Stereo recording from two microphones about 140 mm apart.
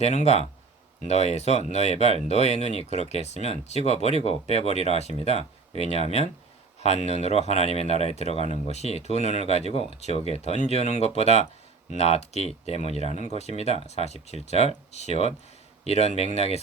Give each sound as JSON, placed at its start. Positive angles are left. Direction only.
{"t": 0.0, "sound": "speech", "side_deg": 55}